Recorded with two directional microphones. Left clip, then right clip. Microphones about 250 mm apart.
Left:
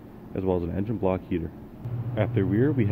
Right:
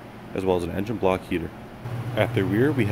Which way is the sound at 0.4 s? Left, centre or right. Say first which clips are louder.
Right 3 dB; centre.